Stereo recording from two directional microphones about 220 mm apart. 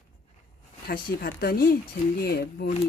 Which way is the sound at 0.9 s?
45° left (ahead or behind).